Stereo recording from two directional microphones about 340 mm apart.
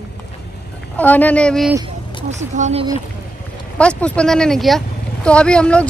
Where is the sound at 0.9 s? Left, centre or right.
Centre.